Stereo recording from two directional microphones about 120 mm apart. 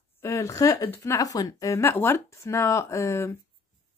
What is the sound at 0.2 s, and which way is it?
A woman's voice, 25° left (ahead or behind).